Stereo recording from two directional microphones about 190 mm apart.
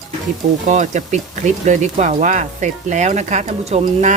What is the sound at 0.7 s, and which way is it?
Speech, 40° right (ahead or behind).